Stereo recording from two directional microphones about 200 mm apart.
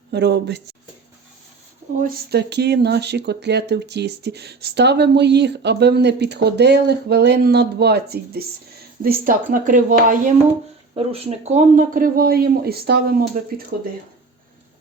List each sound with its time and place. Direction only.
0.1 s speech: 55° right (ahead or behind)
2.0 s a man's voice: 50° right (ahead or behind)
10.9 s a man's voice: 30° right (ahead or behind); by 13.2 s 50° right (ahead or behind)